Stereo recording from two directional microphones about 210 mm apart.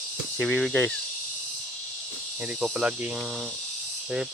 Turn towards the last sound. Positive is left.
turn(degrees=-5)  # may be behind; listen again after turning